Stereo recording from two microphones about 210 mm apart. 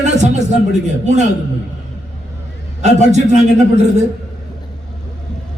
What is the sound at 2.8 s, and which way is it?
Speech, 35° right (ahead or behind).